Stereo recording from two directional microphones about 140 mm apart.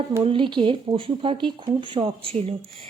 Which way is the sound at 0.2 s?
40° right (ahead or behind).